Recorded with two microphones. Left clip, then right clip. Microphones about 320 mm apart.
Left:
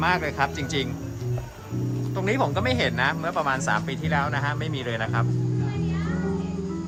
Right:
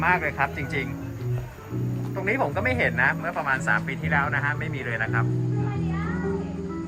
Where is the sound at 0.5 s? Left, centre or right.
Left.